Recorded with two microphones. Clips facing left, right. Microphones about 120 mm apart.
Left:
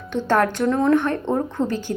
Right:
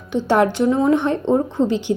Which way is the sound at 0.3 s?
15° right (ahead or behind).